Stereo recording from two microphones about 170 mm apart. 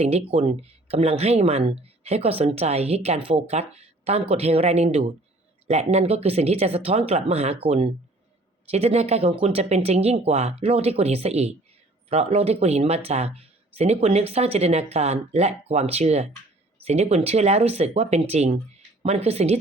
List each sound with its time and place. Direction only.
0.0 s speech: 35° right (ahead or behind)